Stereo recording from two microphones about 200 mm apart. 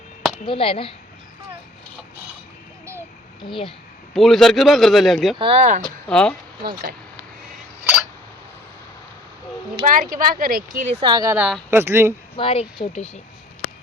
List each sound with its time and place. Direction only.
0.4 s speech: 25° left (ahead or behind)
3.4 s speech: 25° left (ahead or behind)
4.1 s speech: centre (ahead or behind)
5.4 s speech: 30° right (ahead or behind)
5.8 s speech: 5° left (ahead or behind)
6.6 s speech: 20° right (ahead or behind)
9.8 s speech: 45° right (ahead or behind)
11.0 s a woman's voice: 20° right (ahead or behind)
12.4 s speech: 30° left (ahead or behind)